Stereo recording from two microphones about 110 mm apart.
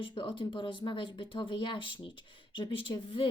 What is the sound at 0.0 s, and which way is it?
A woman's voice, 50° left (ahead or behind).